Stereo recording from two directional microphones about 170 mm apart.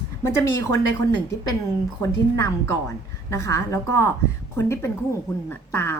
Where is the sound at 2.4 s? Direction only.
15° left (ahead or behind).